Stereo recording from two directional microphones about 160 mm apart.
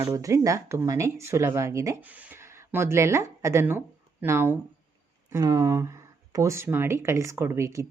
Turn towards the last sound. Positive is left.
turn(degrees=-20)  # may be behind; listen again after turning